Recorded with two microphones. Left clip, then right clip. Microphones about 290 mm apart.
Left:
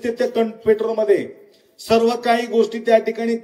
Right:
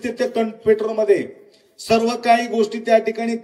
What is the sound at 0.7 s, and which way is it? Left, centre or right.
Speech, right.